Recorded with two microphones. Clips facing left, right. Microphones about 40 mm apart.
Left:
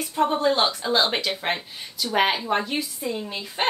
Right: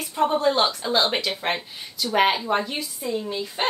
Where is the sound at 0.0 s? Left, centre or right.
Centre.